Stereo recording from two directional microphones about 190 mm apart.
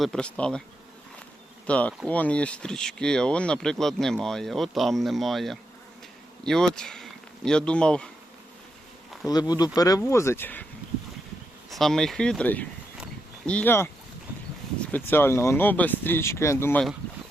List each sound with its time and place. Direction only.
0.0 s speech: 5° left (ahead or behind)
1.6 s speech: 5° left (ahead or behind)
9.2 s speech: 20° left (ahead or behind)
11.7 s speech: centre (ahead or behind)
13.0 s a sound: 5° left (ahead or behind)
14.9 s speech: 10° left (ahead or behind)